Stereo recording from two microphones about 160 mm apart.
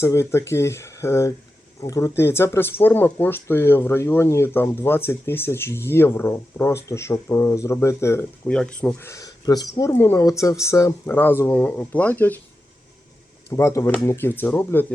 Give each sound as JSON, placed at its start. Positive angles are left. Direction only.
{"t": 0.0, "sound": "speech", "side_deg": 15}
{"t": 13.5, "sound": "speech", "side_deg": 20}